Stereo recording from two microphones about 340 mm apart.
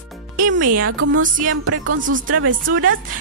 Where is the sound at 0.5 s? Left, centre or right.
Right.